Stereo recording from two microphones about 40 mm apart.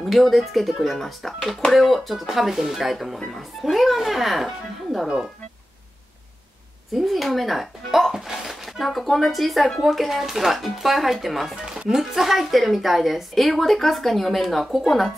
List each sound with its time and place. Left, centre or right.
0.0 s a woman's voice: centre
5.0 s speech: centre
6.9 s a woman's voice: centre